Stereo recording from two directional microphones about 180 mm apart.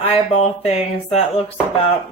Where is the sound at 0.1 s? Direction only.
35° left (ahead or behind).